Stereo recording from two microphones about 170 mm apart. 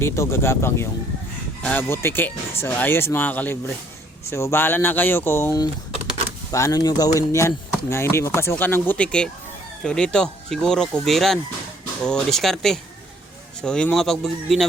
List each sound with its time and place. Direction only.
0.0 s speech: 15° left (ahead or behind)